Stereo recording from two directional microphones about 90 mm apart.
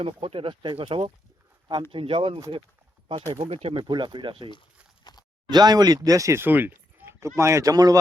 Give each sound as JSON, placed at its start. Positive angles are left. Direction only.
{"t": 0.0, "sound": "speech", "side_deg": -80}
{"t": 5.1, "sound": "a sound", "side_deg": 50}
{"t": 5.5, "sound": "speech", "side_deg": -50}